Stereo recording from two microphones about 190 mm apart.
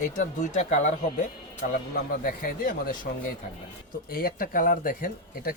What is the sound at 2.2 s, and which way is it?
Speech, 50° left (ahead or behind).